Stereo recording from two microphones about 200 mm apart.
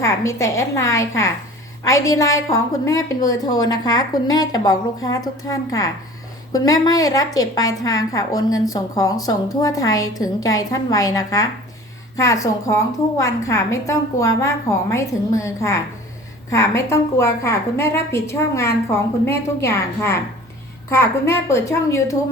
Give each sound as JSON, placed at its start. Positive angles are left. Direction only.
{"t": 0.0, "sound": "a woman's voice", "side_deg": 15}